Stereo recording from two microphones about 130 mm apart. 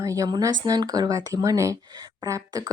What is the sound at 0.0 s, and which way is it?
Speech, 25° right (ahead or behind).